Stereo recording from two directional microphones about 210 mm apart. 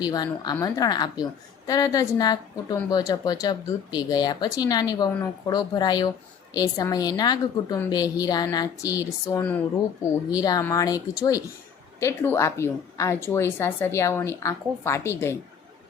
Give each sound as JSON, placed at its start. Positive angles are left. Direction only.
{"t": 0.0, "sound": "a woman's voice", "side_deg": 20}